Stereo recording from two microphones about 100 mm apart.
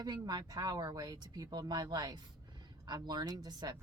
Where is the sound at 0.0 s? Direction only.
45° right (ahead or behind).